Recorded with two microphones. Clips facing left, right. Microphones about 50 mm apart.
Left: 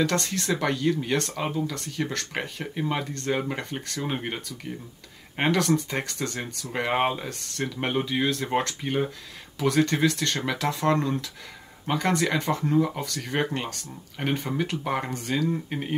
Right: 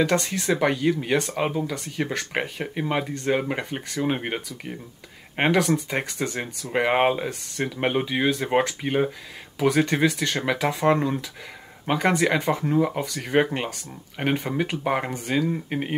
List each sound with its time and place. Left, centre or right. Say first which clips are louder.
0.0 s speech: right 3 dB; centre